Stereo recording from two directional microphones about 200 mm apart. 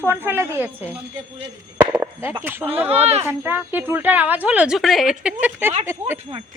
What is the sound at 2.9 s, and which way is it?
Speech, 30° right (ahead or behind).